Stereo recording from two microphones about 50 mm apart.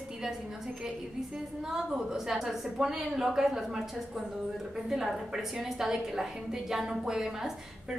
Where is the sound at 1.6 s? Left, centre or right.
Centre.